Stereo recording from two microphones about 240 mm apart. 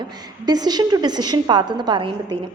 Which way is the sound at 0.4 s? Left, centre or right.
Centre.